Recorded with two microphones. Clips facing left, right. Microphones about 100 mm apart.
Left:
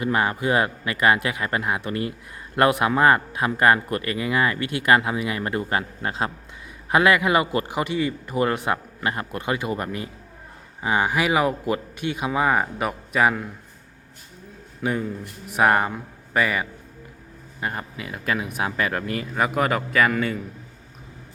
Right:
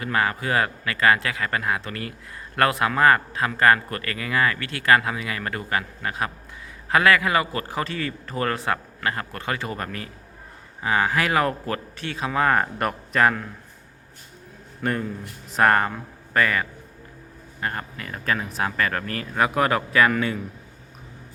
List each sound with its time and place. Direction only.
0.0 s a man's voice: 20° left (ahead or behind)
14.8 s a man's voice: 5° left (ahead or behind)